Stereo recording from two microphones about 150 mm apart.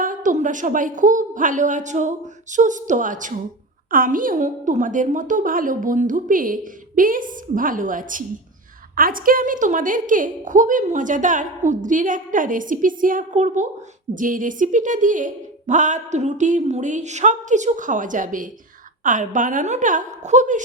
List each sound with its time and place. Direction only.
0.0 s a woman's voice: 65° right (ahead or behind)